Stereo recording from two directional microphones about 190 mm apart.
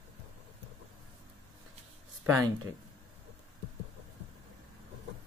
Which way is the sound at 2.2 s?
15° right (ahead or behind).